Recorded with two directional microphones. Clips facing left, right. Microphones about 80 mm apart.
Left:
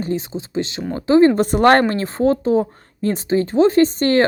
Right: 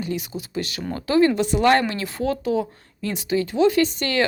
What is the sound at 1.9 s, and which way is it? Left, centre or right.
Speech, left.